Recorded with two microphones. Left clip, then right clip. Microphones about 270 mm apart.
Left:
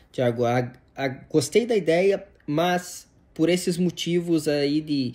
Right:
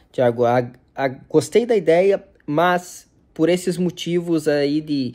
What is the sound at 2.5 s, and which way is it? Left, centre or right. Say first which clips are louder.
Speech: right 6 dB; centre.